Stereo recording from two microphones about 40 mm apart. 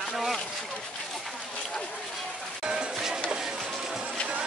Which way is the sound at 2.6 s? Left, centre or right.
Centre.